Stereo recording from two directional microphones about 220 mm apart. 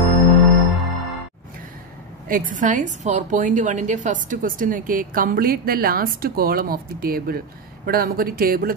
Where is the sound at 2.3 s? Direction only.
35° right (ahead or behind).